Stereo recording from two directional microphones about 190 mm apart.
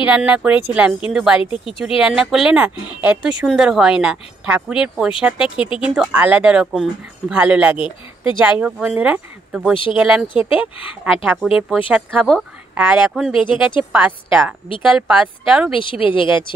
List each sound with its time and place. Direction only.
0.0 s speech: 5° right (ahead or behind)
13.3 s speech: 25° left (ahead or behind)
13.9 s speech: 5° right (ahead or behind)
15.7 s speech: 25° left (ahead or behind)